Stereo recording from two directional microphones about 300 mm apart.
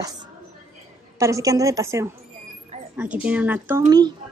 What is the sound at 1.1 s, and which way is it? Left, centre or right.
A woman's voice, centre.